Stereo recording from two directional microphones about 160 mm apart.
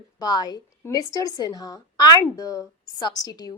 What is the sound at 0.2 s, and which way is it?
A woman's voice, 25° left (ahead or behind).